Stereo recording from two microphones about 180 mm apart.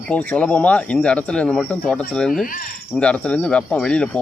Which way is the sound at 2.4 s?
50° left (ahead or behind).